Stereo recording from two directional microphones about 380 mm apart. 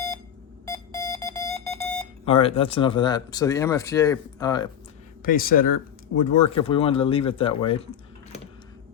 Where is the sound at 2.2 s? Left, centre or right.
Centre.